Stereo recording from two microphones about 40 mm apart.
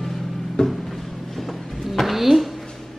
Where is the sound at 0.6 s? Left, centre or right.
Centre.